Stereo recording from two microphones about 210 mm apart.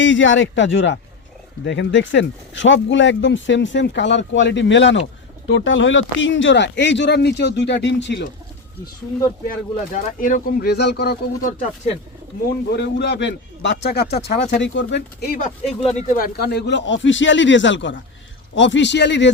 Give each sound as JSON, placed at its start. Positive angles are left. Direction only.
{"t": 0.0, "sound": "speech", "side_deg": 60}
{"t": 9.9, "sound": "a man's voice", "side_deg": 40}
{"t": 15.6, "sound": "speech", "side_deg": 0}
{"t": 16.0, "sound": "speech", "side_deg": 40}